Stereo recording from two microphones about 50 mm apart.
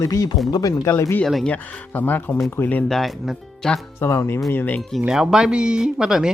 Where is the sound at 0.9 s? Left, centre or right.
Left.